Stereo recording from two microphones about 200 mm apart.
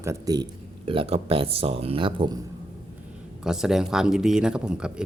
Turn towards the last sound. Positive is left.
turn(degrees=-5)  # may be behind; listen again after turning